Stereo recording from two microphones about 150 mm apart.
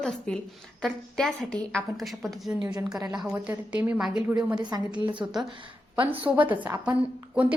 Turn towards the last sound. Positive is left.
turn(degrees=-10)  # may be behind; listen again after turning